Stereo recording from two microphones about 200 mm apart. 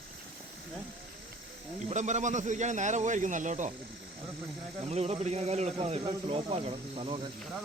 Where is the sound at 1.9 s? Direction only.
35° right (ahead or behind).